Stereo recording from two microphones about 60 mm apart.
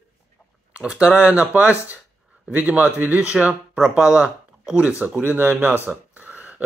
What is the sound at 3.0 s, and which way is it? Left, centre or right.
Speech, right.